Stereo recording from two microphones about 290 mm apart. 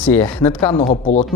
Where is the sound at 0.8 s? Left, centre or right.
Left.